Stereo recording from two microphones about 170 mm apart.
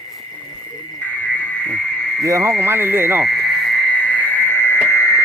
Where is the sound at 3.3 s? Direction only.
Centre (ahead or behind).